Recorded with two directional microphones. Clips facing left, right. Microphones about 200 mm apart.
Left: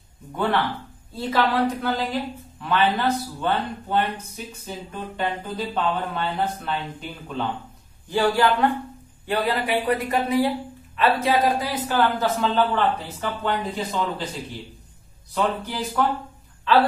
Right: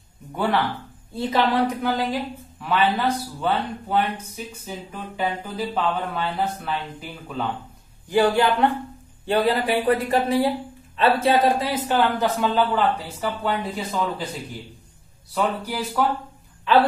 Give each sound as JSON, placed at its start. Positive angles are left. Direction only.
{"t": 0.3, "sound": "speech", "side_deg": -10}
{"t": 8.1, "sound": "speech", "side_deg": -20}
{"t": 12.0, "sound": "speech", "side_deg": -15}
{"t": 15.3, "sound": "speech", "side_deg": -5}